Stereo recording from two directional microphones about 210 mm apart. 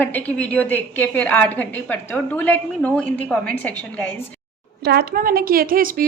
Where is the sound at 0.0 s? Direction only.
5° left (ahead or behind).